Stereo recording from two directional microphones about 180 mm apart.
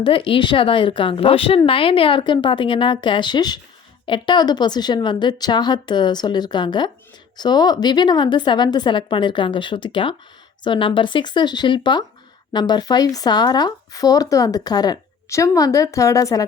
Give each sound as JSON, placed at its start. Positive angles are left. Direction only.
{"t": 0.0, "sound": "speech", "side_deg": 30}